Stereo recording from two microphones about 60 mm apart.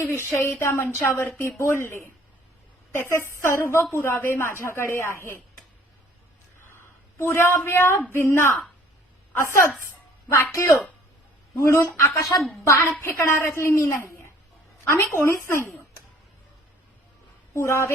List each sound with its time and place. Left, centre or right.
0.1 s a woman's voice: left
6.6 s a sound: left
8.1 s a woman's voice: left
12.3 s speech: left
13.0 s a woman's voice: left
17.5 s a woman's voice: left